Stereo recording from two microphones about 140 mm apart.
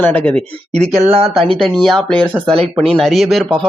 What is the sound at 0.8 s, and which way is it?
Speech, 50° right (ahead or behind).